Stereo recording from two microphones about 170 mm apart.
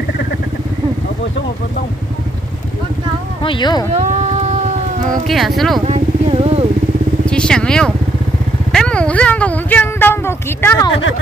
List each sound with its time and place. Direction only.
3.4 s speech: 25° left (ahead or behind)
3.9 s a sound: 45° right (ahead or behind)
5.2 s speech: centre (ahead or behind)
5.9 s vehicle: 35° right (ahead or behind)
7.2 s vehicle: 5° left (ahead or behind)
8.7 s speech: 5° left (ahead or behind)